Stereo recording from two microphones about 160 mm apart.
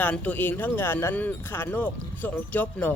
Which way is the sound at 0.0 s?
10° left (ahead or behind).